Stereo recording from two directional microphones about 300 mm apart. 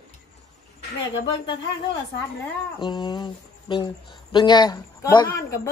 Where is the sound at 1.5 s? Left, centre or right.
Centre.